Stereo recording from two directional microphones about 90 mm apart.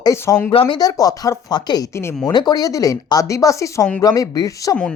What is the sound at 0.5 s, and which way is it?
Speech, 90° left.